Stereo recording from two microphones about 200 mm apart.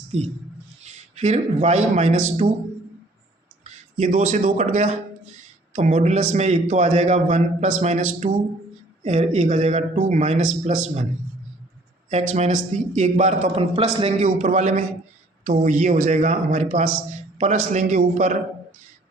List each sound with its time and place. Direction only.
0.9 s a man's voice: 35° right (ahead or behind)
3.6 s a man's voice: 35° right (ahead or behind)
12.1 s a man's voice: 35° right (ahead or behind)